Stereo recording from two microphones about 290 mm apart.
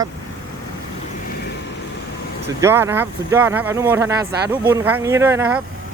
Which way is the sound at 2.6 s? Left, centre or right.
Centre.